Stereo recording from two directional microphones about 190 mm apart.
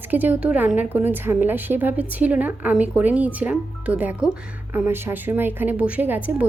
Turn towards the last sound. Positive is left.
turn(degrees=-10)  # may be behind; listen again after turning